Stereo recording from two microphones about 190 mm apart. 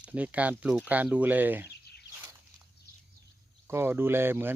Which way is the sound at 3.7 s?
10° right (ahead or behind).